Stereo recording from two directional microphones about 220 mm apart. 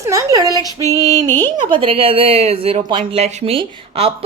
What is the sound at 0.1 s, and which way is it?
A woman's voice, 15° right (ahead or behind).